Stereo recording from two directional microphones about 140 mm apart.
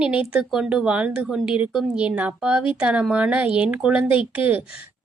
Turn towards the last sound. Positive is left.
turn(degrees=-10)  # may be behind; listen again after turning